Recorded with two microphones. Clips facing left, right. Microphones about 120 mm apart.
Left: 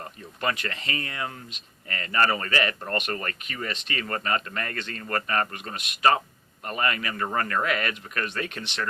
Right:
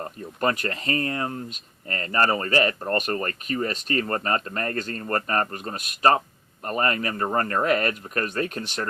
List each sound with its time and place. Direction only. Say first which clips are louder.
0.3 s speech: right 4 dB; 45° right (ahead or behind)